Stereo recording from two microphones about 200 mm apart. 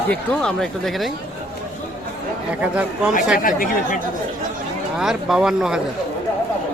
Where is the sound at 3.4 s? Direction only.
45° left (ahead or behind).